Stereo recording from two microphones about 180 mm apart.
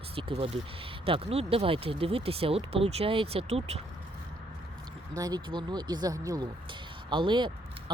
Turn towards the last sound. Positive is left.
turn(degrees=-25)  # may be behind; listen again after turning